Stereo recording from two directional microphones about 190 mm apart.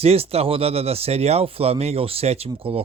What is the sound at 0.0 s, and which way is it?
Speech, 30° right (ahead or behind).